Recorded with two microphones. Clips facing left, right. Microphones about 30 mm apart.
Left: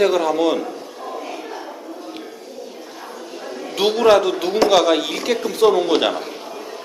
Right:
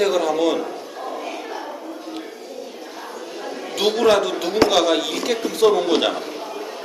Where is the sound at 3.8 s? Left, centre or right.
Centre.